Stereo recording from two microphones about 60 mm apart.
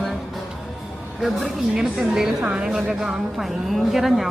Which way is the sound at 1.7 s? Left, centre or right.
Centre.